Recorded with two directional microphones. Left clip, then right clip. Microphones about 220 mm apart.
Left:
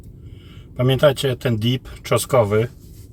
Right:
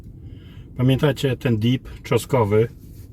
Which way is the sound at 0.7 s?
5° right (ahead or behind).